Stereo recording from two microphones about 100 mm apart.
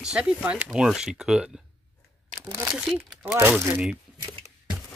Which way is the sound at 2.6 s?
10° right (ahead or behind).